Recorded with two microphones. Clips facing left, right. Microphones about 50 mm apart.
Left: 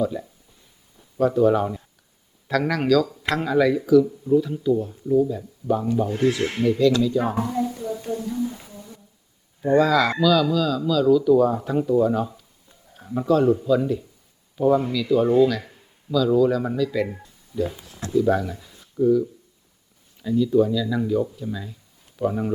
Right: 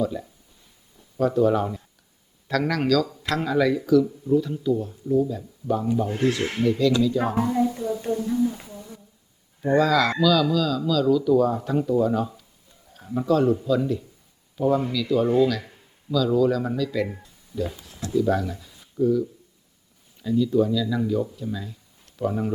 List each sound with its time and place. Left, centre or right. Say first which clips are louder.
0.0 s speech: left 2 dB; centre
7.3 s a sound: right 2 dB; centre
9.6 s speech: left 2 dB; centre